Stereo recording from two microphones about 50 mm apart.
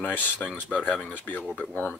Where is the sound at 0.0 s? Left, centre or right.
Left.